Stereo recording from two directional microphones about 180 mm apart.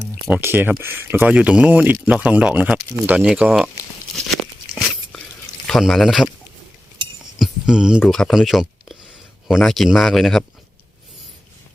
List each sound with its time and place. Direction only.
0.3 s speech: 10° right (ahead or behind)
5.6 s speech: centre (ahead or behind)
7.3 s speech: centre (ahead or behind)